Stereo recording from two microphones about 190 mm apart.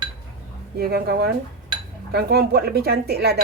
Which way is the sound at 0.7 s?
55° right (ahead or behind).